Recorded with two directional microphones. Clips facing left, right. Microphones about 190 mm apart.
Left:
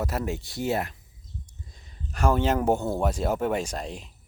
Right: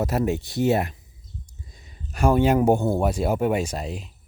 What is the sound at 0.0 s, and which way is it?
Speech, 20° right (ahead or behind).